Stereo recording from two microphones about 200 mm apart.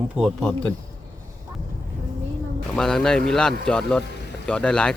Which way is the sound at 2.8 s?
5° left (ahead or behind).